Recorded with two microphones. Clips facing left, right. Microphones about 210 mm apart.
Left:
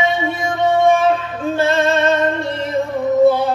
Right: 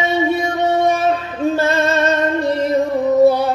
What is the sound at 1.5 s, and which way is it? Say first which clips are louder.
Music: left 3 dB; 40° right (ahead or behind).